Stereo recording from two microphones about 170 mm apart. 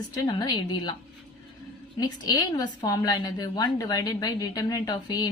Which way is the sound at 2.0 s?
20° left (ahead or behind).